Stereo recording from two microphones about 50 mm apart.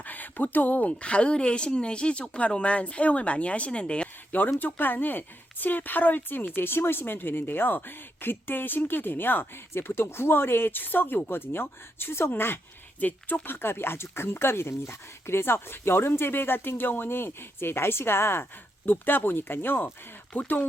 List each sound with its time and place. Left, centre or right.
0.0 s speech: left
4.3 s a woman's voice: left
13.0 s a woman's voice: left
18.9 s a woman's voice: left